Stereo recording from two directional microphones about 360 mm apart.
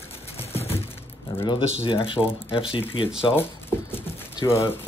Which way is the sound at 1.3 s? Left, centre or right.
Centre.